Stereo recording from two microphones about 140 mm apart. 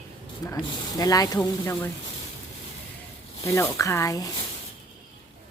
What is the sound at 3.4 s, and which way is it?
Speech, 20° left (ahead or behind).